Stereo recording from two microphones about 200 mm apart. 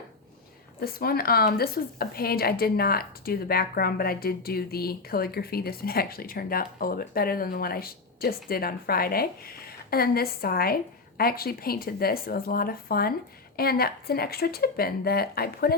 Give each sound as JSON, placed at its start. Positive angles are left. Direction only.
{"t": 0.8, "sound": "speech", "side_deg": 50}